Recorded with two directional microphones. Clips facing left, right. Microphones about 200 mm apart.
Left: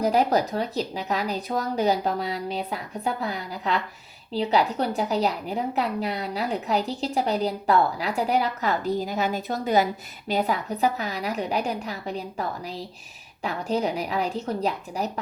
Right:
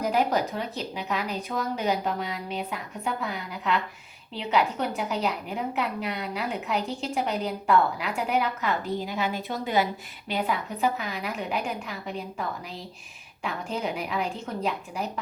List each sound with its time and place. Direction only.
0.0 s a woman's voice: 35° left (ahead or behind)